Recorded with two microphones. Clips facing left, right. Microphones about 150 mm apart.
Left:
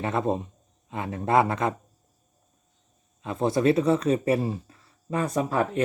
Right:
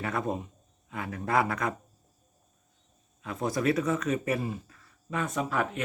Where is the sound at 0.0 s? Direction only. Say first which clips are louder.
Left 5 dB; 25° left (ahead or behind).